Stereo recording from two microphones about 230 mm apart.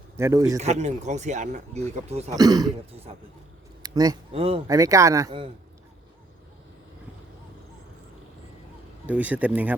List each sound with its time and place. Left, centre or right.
0.2 s speech: centre
0.6 s speech: right
2.3 s speech: centre
9.0 s speech: centre